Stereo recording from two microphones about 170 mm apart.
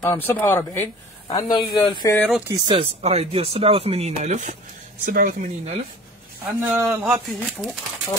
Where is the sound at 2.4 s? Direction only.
20° right (ahead or behind).